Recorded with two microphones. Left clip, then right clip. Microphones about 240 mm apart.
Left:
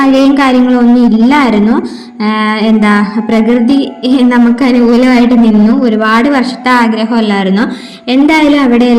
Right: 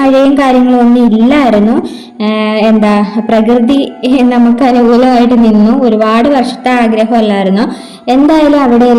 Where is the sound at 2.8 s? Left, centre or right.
Left.